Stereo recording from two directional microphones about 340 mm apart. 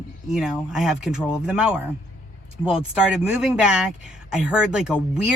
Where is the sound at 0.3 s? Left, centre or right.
Centre.